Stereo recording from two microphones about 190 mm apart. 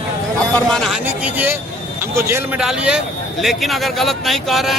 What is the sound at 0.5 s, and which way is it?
A man's voice, centre (ahead or behind).